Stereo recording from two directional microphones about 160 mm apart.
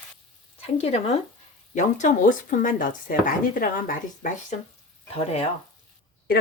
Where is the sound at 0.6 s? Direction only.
40° left (ahead or behind).